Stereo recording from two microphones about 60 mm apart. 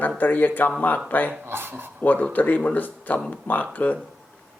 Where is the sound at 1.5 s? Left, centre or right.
Right.